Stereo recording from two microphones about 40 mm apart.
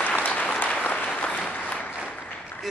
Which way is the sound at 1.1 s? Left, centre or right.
Left.